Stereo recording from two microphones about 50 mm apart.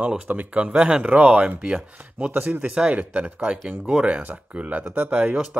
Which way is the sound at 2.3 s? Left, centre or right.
Right.